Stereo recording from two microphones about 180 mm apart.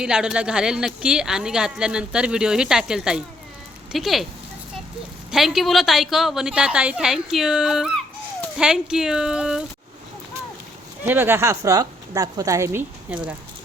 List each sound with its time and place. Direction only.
0.0 s speech: 5° right (ahead or behind)
5.3 s speech: centre (ahead or behind)
11.0 s a woman's voice: 10° right (ahead or behind)